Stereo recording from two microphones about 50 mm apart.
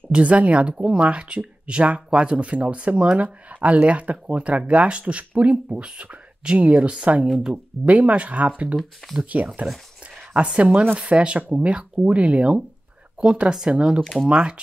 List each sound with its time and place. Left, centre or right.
0.1 s speech: right
14.0 s speech: centre